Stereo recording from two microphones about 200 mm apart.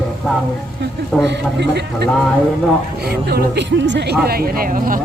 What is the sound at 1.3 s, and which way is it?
A man's voice, 55° right (ahead or behind).